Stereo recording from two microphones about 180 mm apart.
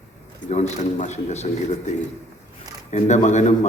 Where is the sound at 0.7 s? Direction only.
40° left (ahead or behind).